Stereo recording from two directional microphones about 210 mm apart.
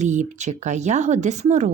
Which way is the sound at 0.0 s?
35° right (ahead or behind).